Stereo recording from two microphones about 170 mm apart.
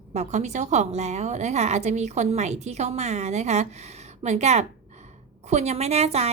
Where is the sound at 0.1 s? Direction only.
40° right (ahead or behind).